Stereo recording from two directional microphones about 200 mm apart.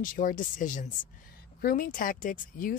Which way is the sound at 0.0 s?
45° left (ahead or behind).